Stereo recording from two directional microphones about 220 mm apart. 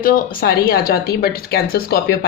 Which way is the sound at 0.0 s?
40° left (ahead or behind).